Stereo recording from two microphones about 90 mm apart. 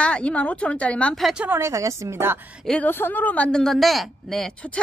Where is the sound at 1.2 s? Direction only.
10° right (ahead or behind).